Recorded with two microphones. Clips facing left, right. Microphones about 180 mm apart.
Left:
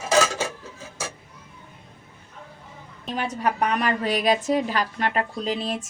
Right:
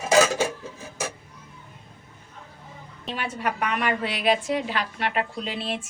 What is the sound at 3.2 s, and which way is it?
A woman's voice, 40° left (ahead or behind).